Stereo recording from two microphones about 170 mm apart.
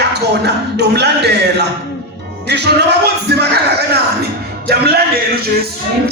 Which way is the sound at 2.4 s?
80° right.